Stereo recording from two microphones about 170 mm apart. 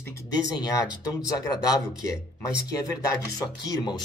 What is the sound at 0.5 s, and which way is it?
Speech, 25° left (ahead or behind).